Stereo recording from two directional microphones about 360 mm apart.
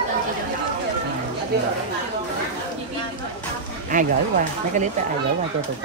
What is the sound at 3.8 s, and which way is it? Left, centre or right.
Speech, right.